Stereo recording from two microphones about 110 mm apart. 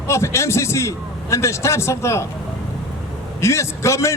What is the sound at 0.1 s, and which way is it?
A man's voice, 25° left (ahead or behind).